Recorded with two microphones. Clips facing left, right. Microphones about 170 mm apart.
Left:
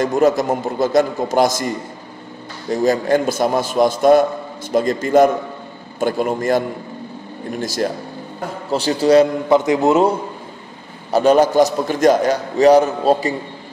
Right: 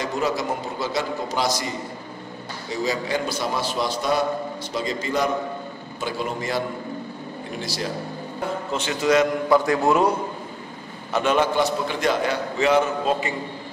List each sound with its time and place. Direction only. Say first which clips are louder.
0.0 s a man's voice: left 9 dB; 50° left (ahead or behind)
2.7 s a man's voice: left 9 dB; 50° left (ahead or behind)
8.7 s a man's voice: left 8 dB; 35° left (ahead or behind)
9.6 s a man's voice: left 5 dB; 20° left (ahead or behind)
11.1 s a man's voice: left 8 dB; 35° left (ahead or behind)